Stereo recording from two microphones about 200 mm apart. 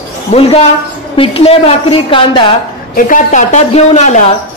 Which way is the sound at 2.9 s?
40° left (ahead or behind).